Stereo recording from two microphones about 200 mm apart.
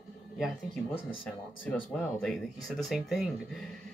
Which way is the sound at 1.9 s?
Centre (ahead or behind).